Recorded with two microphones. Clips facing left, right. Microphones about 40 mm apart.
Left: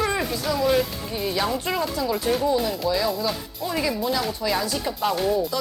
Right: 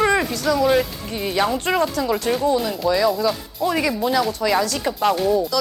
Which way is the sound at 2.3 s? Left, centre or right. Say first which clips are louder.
Left 1 dB; right.